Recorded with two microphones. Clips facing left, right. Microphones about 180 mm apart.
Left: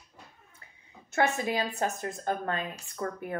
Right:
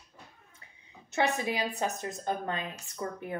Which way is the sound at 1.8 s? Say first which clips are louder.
Left 2 dB; 15° right (ahead or behind).